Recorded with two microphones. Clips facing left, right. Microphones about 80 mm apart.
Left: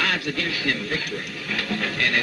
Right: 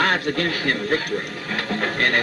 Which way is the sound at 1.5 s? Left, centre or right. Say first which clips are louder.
Right 2 dB; right.